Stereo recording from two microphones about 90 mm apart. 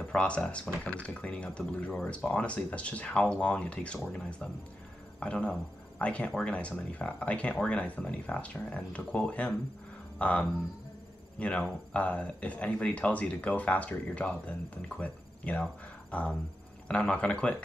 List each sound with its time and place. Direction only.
0.1 s speech: 10° left (ahead or behind)